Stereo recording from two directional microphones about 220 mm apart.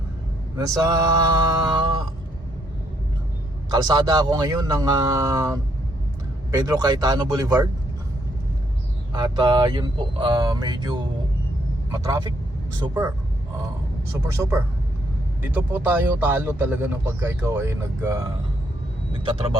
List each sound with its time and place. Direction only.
0.5 s speech: 15° right (ahead or behind)
3.7 s speech: 20° right (ahead or behind)
9.1 s speech: 20° right (ahead or behind)
14.3 s speech: 15° right (ahead or behind)